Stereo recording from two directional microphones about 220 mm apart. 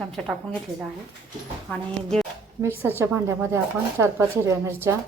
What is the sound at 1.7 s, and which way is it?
Speech, 5° left (ahead or behind).